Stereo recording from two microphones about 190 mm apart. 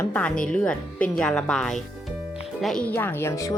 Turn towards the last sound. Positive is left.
turn(degrees=15)  # may be behind; listen again after turning